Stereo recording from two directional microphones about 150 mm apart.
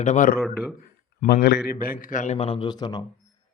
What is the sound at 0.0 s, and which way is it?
Speech, 50° left (ahead or behind).